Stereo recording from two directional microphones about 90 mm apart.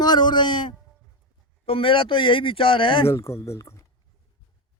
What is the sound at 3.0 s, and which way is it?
Speech, 30° left (ahead or behind).